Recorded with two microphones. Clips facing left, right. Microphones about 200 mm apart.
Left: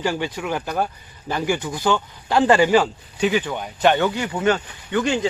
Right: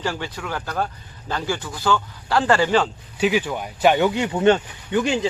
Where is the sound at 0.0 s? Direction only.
15° left (ahead or behind).